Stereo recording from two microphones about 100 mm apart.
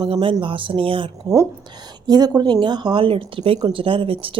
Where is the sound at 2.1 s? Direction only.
40° right (ahead or behind).